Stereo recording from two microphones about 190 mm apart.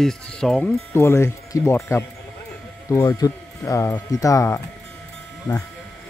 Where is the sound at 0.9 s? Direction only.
15° left (ahead or behind).